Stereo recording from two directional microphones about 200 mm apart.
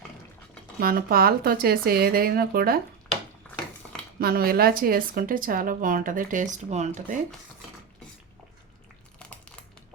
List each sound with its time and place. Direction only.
0.8 s a woman's voice: 45° right (ahead or behind)
3.4 s a sound: 10° left (ahead or behind)
4.2 s a woman's voice: 50° right (ahead or behind)